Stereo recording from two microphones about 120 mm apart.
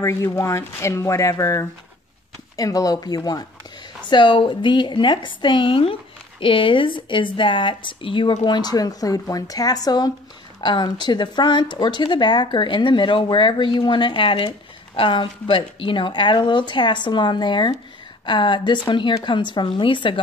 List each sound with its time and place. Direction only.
0.0 s speech: 20° left (ahead or behind)
4.1 s speech: 45° left (ahead or behind)